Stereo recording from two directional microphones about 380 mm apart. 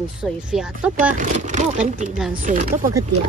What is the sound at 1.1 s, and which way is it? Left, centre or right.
Speech, centre.